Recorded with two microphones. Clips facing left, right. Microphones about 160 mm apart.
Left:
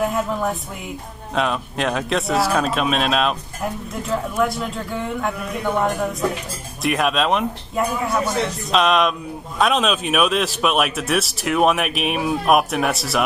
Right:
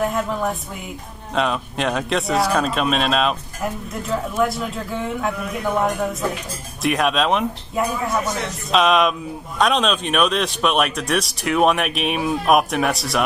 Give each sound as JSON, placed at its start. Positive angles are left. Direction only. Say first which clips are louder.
{"t": 0.0, "sound": "speech", "louder": "even", "side_deg": 0}